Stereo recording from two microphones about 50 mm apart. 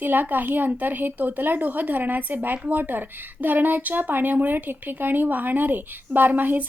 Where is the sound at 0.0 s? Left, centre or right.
Right.